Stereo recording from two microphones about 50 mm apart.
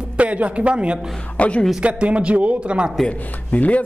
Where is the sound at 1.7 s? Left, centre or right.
Right.